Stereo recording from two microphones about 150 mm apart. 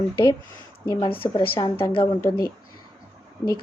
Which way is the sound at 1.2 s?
35° left (ahead or behind).